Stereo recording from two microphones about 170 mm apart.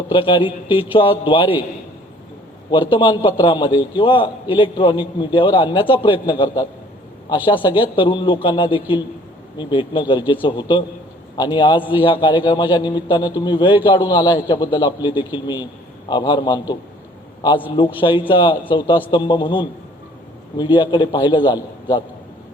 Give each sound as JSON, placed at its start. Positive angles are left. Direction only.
{"t": 0.1, "sound": "a man's voice", "side_deg": 30}
{"t": 2.9, "sound": "a man's voice", "side_deg": 30}
{"t": 18.0, "sound": "a man's voice", "side_deg": 30}